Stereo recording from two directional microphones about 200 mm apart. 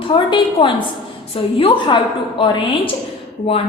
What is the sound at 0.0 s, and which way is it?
A woman's voice, 25° left (ahead or behind).